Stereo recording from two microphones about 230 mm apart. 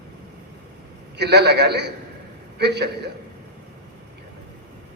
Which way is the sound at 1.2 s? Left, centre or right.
Right.